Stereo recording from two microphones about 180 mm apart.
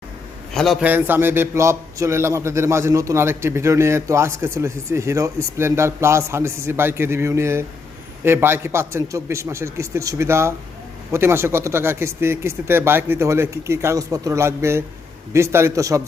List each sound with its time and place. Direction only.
0.5 s a man's voice: centre (ahead or behind); by 16.0 s 15° right (ahead or behind)